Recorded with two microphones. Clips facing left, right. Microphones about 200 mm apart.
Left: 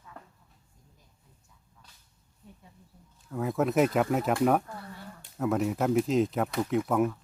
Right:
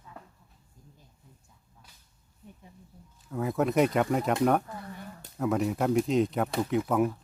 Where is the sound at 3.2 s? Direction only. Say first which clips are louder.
Even; centre (ahead or behind).